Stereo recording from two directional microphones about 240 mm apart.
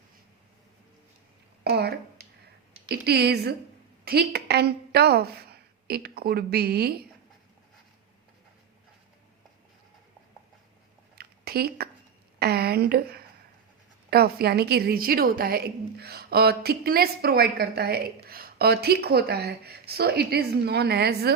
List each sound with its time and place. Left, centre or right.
1.6 s a woman's voice: right
11.1 s a sound: right
12.4 s a woman's voice: right